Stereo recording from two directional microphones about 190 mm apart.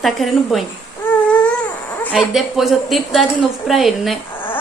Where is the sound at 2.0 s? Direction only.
Centre (ahead or behind).